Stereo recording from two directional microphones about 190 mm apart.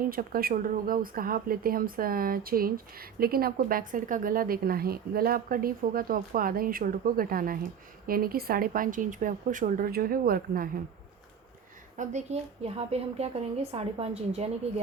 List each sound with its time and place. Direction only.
0.1 s speech: 50° right (ahead or behind)
11.9 s a woman's voice: 35° right (ahead or behind)